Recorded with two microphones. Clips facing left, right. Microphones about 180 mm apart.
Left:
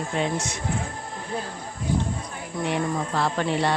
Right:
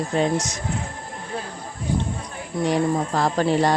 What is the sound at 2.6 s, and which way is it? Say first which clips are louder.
Music: right 5 dB; 40° right (ahead or behind).